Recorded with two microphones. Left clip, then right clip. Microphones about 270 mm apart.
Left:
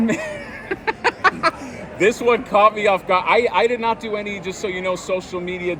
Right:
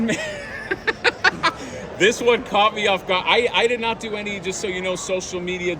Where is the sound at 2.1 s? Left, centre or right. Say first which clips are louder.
Left 1 dB; centre.